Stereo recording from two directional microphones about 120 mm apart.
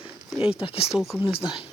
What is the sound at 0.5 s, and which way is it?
Speech, 50° left (ahead or behind).